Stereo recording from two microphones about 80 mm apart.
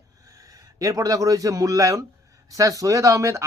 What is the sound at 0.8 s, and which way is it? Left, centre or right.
A man's voice, right.